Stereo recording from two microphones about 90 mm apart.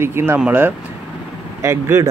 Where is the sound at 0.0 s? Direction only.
25° right (ahead or behind).